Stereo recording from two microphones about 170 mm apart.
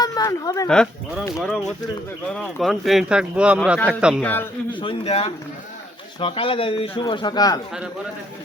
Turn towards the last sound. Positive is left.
turn(degrees=20)  # may be behind; listen again after turning